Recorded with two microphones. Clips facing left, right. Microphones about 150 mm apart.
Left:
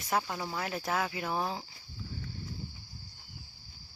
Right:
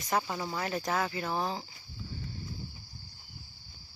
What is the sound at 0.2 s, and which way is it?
Speech, 5° right (ahead or behind).